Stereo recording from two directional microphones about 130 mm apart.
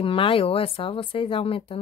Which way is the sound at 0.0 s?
45° left (ahead or behind).